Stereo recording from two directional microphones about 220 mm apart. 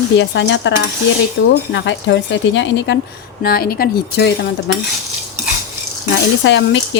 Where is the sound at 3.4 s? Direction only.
45° left (ahead or behind).